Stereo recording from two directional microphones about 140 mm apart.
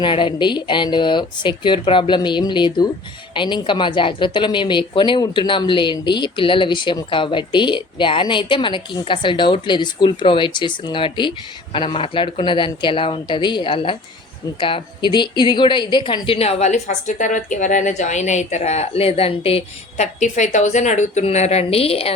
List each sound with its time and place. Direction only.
0.0 s a woman's voice: 35° left (ahead or behind)